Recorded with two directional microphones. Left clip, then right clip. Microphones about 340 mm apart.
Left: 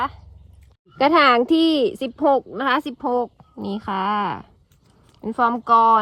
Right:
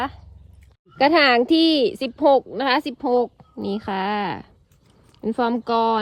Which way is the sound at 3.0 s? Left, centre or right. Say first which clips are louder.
Right 2 dB; right.